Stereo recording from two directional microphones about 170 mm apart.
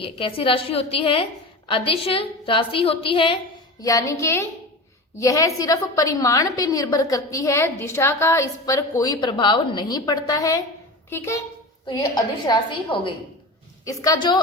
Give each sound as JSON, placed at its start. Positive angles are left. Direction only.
{"t": 0.0, "sound": "a woman's voice", "side_deg": 30}
{"t": 3.8, "sound": "a woman's voice", "side_deg": 20}